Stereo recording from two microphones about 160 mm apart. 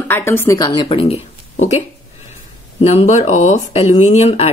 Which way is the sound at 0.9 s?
40° left (ahead or behind).